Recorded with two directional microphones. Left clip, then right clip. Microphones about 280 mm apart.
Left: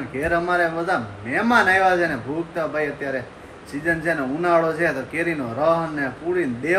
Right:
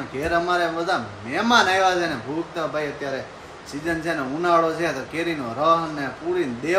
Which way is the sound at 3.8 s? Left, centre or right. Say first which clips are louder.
Left 3 dB; centre.